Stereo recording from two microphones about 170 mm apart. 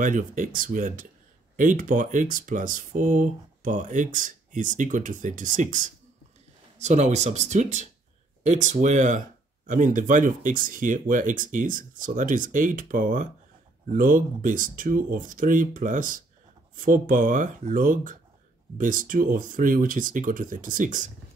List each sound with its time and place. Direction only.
0.0 s speech: 50° right (ahead or behind)